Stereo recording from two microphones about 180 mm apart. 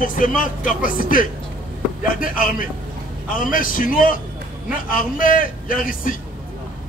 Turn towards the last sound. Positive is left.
turn(degrees=50)  # may be behind; listen again after turning